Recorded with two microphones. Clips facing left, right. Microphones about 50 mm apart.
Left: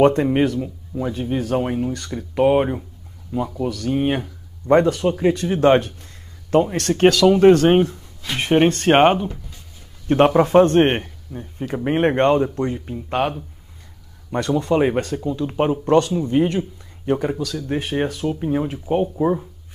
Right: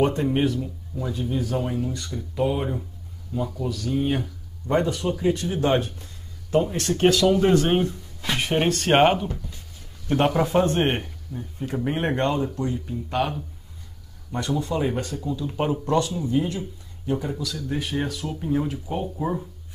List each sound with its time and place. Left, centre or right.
0.0 s speech: left
0.6 s speech: left
3.9 s speech: left
4.6 s speech: left
5.0 s speech: left
8.4 s speech: left
10.0 s speech: left
10.8 s speech: left
14.6 s speech: left
15.5 s speech: left
19.1 s speech: centre